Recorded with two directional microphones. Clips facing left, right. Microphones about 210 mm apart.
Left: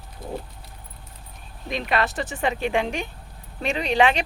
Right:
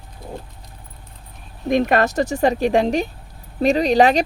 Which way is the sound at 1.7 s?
45° right (ahead or behind).